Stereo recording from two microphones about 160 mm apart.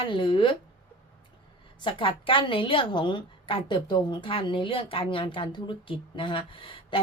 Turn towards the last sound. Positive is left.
turn(degrees=35)  # may be behind; listen again after turning